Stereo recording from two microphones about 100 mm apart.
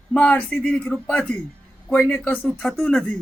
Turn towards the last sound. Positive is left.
turn(degrees=10)  # may be behind; listen again after turning